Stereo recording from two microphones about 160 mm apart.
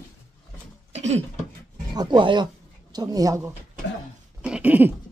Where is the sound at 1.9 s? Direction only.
30° right (ahead or behind).